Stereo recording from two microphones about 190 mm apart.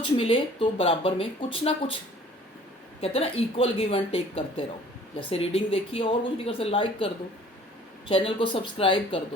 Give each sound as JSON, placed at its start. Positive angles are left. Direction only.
{"t": 0.0, "sound": "speech", "side_deg": 25}
{"t": 3.0, "sound": "speech", "side_deg": 30}